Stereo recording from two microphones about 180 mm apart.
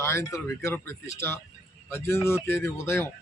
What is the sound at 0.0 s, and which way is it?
Speech, 15° left (ahead or behind).